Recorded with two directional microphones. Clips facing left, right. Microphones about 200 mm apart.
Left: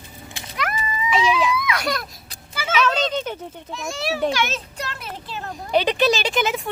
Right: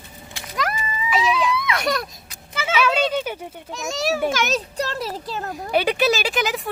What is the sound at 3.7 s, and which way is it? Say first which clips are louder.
A child's voice: right 3 dB; 45° right (ahead or behind).